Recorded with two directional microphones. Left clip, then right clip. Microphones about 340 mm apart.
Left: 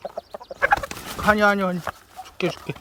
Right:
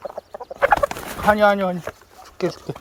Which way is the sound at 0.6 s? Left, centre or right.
Centre.